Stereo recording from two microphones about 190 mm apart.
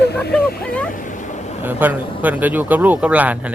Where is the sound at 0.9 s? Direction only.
40° left (ahead or behind).